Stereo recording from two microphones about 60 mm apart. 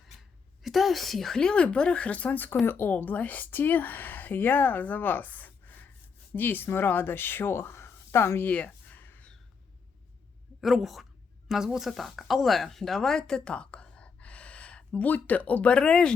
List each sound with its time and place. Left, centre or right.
0.2 s a woman's voice: centre; by 8.4 s left
8.4 s a sound: left
10.6 s a woman's voice: centre